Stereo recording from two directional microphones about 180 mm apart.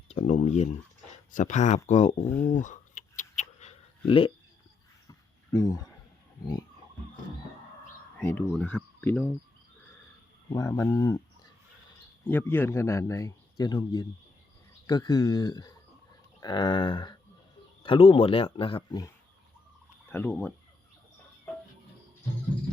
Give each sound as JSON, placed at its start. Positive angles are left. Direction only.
{"t": 0.1, "sound": "a sound", "side_deg": 40}
{"t": 1.3, "sound": "speech", "side_deg": 45}
{"t": 2.2, "sound": "speech", "side_deg": 10}
{"t": 2.6, "sound": "a sound", "side_deg": 45}
{"t": 5.0, "sound": "a sound", "side_deg": 20}
{"t": 8.2, "sound": "speech", "side_deg": 10}
{"t": 10.5, "sound": "a man's voice", "side_deg": 20}
{"t": 12.3, "sound": "a man's voice", "side_deg": 10}
{"t": 20.1, "sound": "turkey", "side_deg": 10}